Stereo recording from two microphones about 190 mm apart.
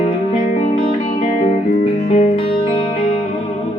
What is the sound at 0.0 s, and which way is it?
Music, 30° left (ahead or behind).